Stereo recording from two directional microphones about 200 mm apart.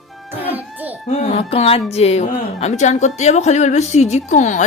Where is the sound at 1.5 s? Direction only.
30° left (ahead or behind).